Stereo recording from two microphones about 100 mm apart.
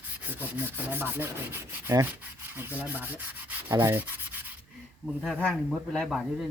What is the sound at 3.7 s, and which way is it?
Speech, 30° right (ahead or behind).